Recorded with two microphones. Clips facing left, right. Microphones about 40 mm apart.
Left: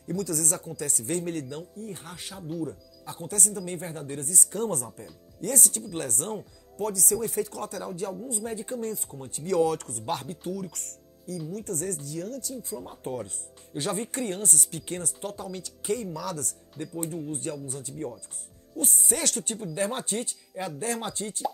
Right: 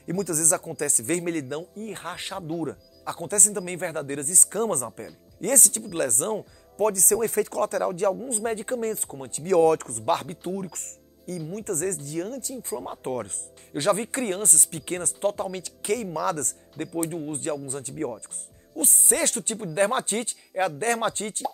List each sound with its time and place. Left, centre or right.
0.0 s speech: right